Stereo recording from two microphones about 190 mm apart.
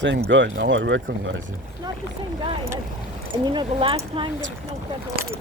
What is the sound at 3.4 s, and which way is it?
Speech, 25° right (ahead or behind).